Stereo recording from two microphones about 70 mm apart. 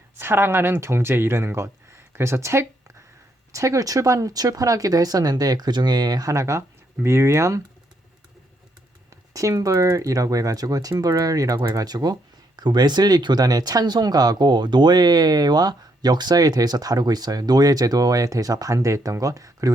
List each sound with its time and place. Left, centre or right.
0.2 s speech: right
9.3 s speech: right
12.5 s speech: right